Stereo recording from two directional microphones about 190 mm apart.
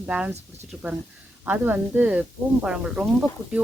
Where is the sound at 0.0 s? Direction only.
5° right (ahead or behind).